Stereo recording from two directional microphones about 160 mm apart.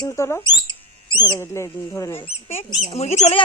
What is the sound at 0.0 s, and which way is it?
Speech, 20° left (ahead or behind).